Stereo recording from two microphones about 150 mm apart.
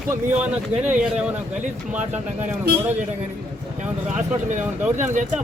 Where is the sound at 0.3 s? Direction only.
10° right (ahead or behind).